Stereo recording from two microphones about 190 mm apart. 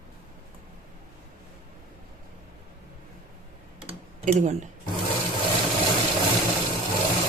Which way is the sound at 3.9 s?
40° right (ahead or behind).